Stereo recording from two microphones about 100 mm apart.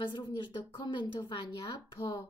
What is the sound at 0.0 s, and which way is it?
A woman's voice, 50° left (ahead or behind).